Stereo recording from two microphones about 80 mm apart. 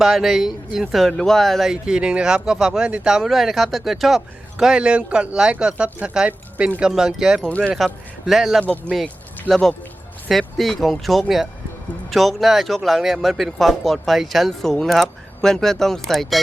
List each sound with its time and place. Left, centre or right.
0.0 s speech: centre
1.7 s speech: centre
7.4 s speech: centre
8.3 s speech: centre
8.9 s speech: centre
9.5 s speech: centre